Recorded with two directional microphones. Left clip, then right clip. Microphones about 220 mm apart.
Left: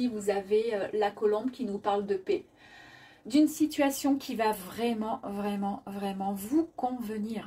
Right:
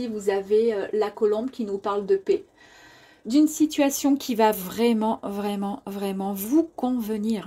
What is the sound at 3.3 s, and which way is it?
A woman's voice, 45° right (ahead or behind).